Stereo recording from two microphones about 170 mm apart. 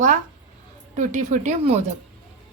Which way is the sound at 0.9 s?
45° right (ahead or behind).